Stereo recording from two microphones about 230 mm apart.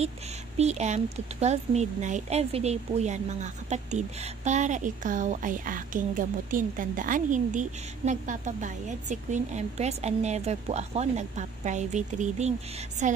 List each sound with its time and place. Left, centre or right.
0.6 s speech: right